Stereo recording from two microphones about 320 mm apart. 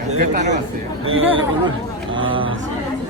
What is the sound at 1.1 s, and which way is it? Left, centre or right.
Speech, right.